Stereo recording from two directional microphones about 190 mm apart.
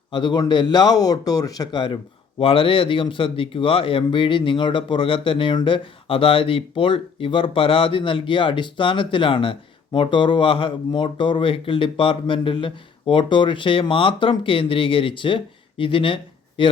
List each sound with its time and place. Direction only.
0.1 s speech: 25° left (ahead or behind)